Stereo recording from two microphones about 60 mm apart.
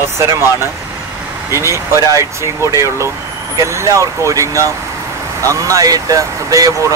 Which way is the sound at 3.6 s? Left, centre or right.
Right.